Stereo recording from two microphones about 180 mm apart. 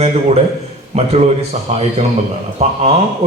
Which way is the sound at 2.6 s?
40° right (ahead or behind).